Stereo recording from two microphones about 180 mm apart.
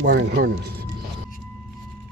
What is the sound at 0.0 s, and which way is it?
Speech, 60° right (ahead or behind).